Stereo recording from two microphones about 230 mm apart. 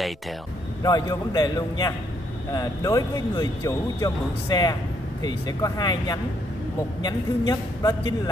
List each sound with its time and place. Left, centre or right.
0.8 s a man's voice: centre